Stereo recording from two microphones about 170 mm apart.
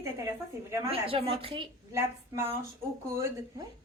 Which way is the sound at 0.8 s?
35° right (ahead or behind).